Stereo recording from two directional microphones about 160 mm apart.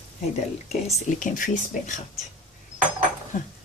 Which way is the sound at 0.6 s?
40° left (ahead or behind).